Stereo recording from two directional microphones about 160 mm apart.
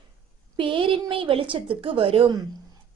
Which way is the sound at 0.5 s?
30° right (ahead or behind).